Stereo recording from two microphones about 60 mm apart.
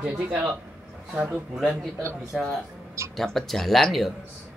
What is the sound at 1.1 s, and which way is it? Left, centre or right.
Speech, centre.